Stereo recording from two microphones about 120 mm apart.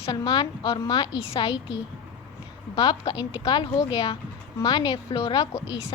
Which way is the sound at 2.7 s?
40° left (ahead or behind).